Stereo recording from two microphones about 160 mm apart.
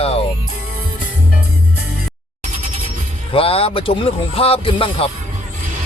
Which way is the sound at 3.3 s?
35° left (ahead or behind).